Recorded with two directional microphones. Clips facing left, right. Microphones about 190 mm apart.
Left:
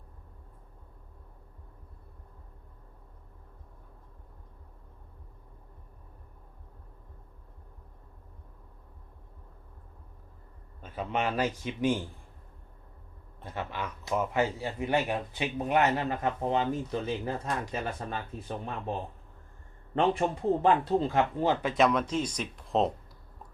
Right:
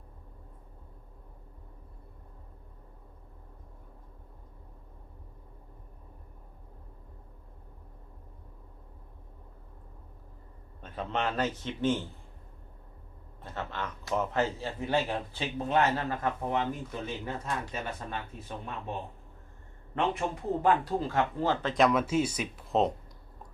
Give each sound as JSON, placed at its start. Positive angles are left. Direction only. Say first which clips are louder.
{"t": 10.8, "sound": "speech", "louder": "left 1 dB", "side_deg": 5}
{"t": 13.4, "sound": "speech", "louder": "left 1 dB", "side_deg": 10}
{"t": 20.0, "sound": "speech", "louder": "left 4 dB", "side_deg": 30}